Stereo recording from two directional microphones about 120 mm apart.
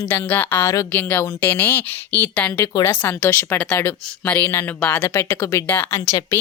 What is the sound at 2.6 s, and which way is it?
Speech, 30° left (ahead or behind).